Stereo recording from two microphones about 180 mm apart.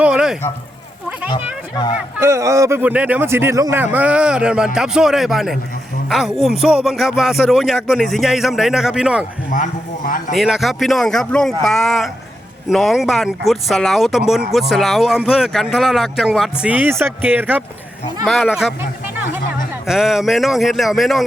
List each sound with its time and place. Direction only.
0.0 s a sound: 5° right (ahead or behind)
2.0 s speech: 15° right (ahead or behind)
9.5 s a man's voice: 50° left (ahead or behind)
10.3 s speech: centre (ahead or behind)
19.9 s speech: centre (ahead or behind)